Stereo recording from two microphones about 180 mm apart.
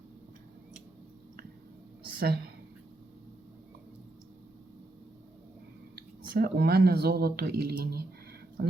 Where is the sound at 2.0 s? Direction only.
60° right (ahead or behind).